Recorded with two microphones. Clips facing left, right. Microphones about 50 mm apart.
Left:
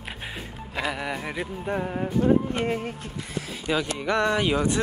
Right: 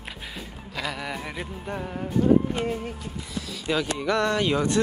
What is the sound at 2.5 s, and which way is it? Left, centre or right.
Speech, left.